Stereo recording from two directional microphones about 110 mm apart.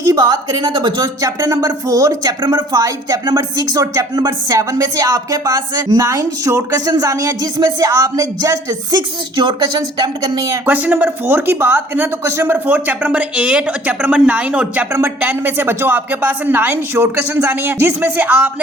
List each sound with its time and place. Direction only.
0.0 s speech: 30° right (ahead or behind)
10.7 s a woman's voice: 15° right (ahead or behind)